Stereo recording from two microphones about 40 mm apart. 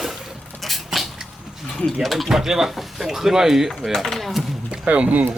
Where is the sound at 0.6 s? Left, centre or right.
Centre.